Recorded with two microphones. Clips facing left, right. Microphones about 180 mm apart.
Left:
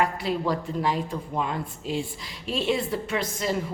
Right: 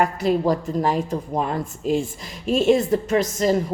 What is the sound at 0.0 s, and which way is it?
A woman's voice, 45° right (ahead or behind).